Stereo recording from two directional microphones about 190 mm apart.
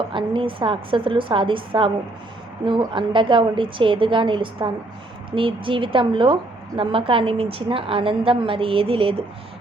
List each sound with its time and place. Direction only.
0.1 s a woman's voice: 25° right (ahead or behind)